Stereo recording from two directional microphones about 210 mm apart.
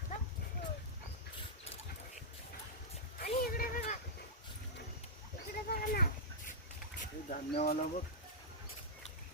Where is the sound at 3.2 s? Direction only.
45° left (ahead or behind).